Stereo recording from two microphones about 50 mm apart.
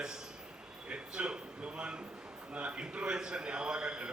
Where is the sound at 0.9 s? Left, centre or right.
Right.